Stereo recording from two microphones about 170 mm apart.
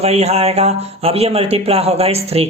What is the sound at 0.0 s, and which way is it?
Speech, 40° right (ahead or behind).